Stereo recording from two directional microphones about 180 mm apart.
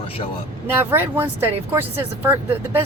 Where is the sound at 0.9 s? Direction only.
10° right (ahead or behind).